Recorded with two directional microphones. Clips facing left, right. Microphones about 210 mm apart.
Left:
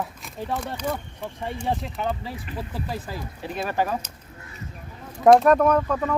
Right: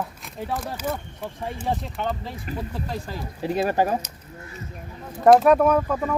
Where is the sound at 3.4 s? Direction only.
15° right (ahead or behind).